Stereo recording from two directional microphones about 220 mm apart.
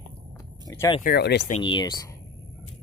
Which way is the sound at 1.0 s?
45° left (ahead or behind).